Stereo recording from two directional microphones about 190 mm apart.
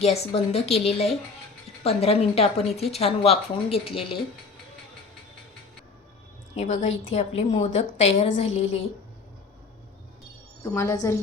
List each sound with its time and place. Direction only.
0.0 s speech: 35° left (ahead or behind)
6.6 s speech: 35° left (ahead or behind)
10.6 s a woman's voice: 15° left (ahead or behind)